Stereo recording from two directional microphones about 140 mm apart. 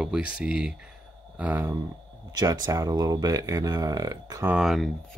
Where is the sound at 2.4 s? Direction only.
25° right (ahead or behind).